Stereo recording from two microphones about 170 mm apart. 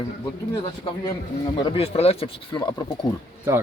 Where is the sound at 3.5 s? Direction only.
15° right (ahead or behind).